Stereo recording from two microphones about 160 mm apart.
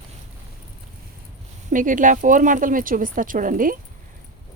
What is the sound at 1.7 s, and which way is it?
Speech, 55° right (ahead or behind).